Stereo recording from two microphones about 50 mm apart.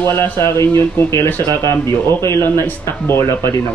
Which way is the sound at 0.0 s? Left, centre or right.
Left.